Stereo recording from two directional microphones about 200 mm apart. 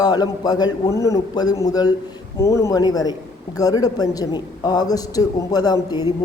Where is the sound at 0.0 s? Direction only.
20° left (ahead or behind).